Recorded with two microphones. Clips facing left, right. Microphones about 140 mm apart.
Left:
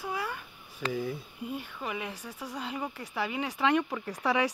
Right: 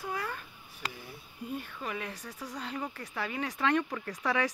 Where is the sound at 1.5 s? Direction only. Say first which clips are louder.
Even; 10° left (ahead or behind).